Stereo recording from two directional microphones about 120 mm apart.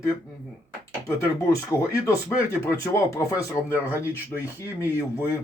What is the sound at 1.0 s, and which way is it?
Speech, 25° left (ahead or behind).